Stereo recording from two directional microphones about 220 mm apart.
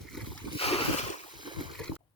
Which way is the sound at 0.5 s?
25° left (ahead or behind).